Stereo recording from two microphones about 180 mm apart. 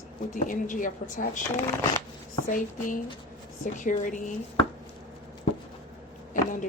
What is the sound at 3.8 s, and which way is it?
Speech, 45° left (ahead or behind).